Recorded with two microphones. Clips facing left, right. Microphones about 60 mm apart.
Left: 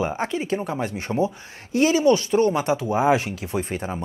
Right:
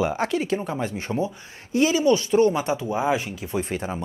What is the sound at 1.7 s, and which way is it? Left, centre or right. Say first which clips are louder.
Speech: left 1 dB; left.